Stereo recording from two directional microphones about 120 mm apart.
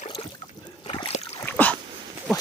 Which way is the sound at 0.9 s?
55° left (ahead or behind).